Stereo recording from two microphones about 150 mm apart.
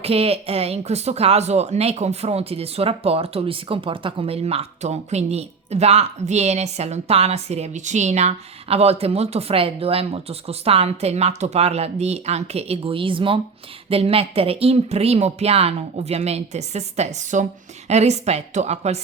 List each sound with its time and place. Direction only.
0.0 s speech: 40° right (ahead or behind)